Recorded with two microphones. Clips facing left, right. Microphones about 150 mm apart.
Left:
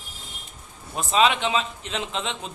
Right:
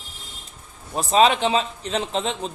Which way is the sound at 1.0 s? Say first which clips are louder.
Right 4 dB; 35° right (ahead or behind).